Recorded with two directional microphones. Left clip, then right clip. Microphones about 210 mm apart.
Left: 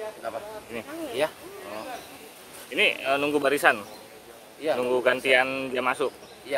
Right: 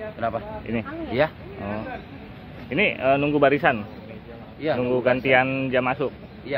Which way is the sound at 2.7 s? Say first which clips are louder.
Right 3 dB; 20° left (ahead or behind).